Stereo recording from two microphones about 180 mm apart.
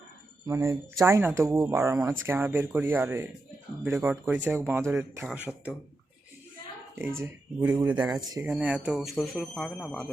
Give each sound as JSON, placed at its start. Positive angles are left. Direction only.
{"t": 0.4, "sound": "speech", "side_deg": -15}
{"t": 7.2, "sound": "speech", "side_deg": -10}
{"t": 7.9, "sound": "speech", "side_deg": -20}
{"t": 8.4, "sound": "speech", "side_deg": -10}